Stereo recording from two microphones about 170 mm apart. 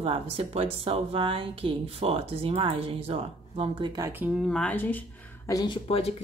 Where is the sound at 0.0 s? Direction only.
35° right (ahead or behind).